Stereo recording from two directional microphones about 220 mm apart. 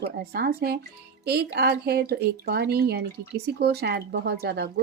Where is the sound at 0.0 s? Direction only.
45° right (ahead or behind).